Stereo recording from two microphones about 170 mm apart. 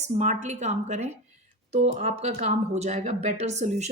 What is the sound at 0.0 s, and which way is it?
A woman's voice, 45° right (ahead or behind).